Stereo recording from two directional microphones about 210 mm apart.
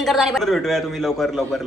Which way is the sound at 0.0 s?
Centre (ahead or behind).